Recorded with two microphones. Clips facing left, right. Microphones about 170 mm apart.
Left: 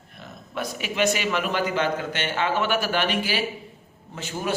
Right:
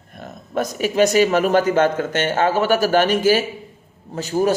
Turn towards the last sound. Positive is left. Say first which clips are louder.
# right 10 dB
turn(degrees=-40)  # may be behind; listen again after turning